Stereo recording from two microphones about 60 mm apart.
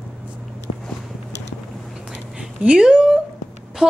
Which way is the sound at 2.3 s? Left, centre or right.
Centre.